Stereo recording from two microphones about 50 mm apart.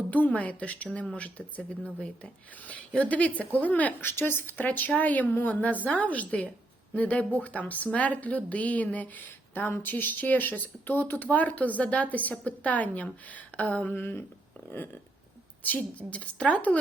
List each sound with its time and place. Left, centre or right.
0.1 s a woman's voice: left
4.0 s speech: left
13.9 s a sound: left
16.0 s a woman's voice: left